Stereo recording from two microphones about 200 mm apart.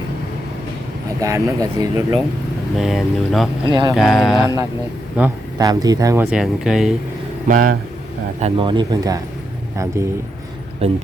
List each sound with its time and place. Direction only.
1.2 s speech: 15° right (ahead or behind)
2.7 s speech: centre (ahead or behind)
3.7 s speech: 25° right (ahead or behind)
3.9 s speech: centre (ahead or behind)
5.6 s speech: 20° right (ahead or behind)
6.3 s speech: 5° right (ahead or behind)
7.4 s speech: 40° right (ahead or behind)
8.4 s speech: 30° right (ahead or behind)
10.8 s speech: 30° right (ahead or behind)